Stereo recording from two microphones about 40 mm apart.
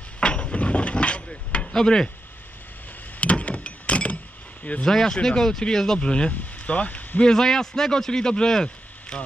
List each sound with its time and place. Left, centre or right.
0.2 s a sound: left
1.7 s speech: centre
3.2 s a sound: left
4.8 s a man's voice: centre
5.9 s speech: left
7.2 s a man's voice: centre